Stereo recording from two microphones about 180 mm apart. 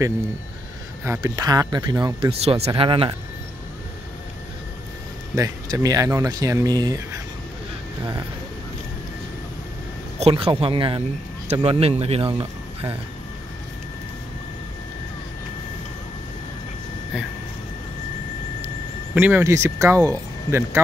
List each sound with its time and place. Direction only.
1.0 s speech: 15° right (ahead or behind)
2.4 s speech: 35° right (ahead or behind)
5.3 s speech: 20° right (ahead or behind)
10.1 s speech: 30° right (ahead or behind)
19.1 s speech: 10° right (ahead or behind)